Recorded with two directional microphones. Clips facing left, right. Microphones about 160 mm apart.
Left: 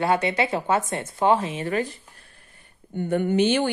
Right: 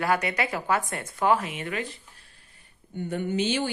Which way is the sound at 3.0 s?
55° left (ahead or behind).